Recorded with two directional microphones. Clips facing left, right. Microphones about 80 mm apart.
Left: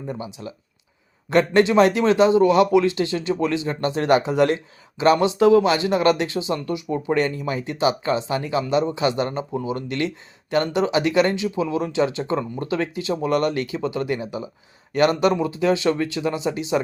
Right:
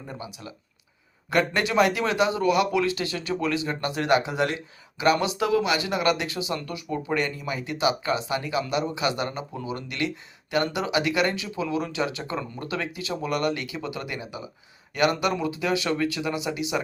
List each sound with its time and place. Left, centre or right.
0.1 s a man's voice: left